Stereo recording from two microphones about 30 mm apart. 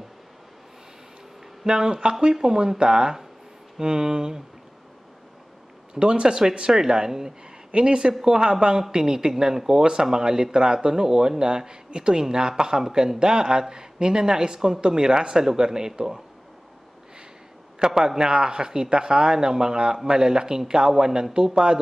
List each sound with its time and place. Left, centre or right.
1.6 s speech: right
5.9 s speech: right
7.7 s speech: right
17.7 s speech: right